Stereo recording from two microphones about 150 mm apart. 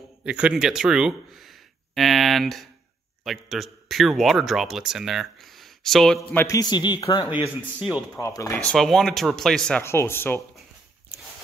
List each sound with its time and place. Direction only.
0.2 s speech: 5° right (ahead or behind)
6.3 s a man's voice: 20° left (ahead or behind)
8.6 s speech: centre (ahead or behind)
9.8 s speech: 15° left (ahead or behind)